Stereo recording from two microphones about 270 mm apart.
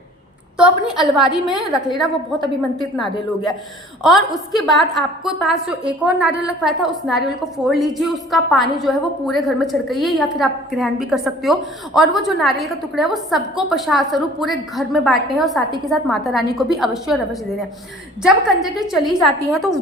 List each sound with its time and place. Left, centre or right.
0.5 s a woman's voice: centre
2.7 s a woman's voice: centre
18.2 s a woman's voice: centre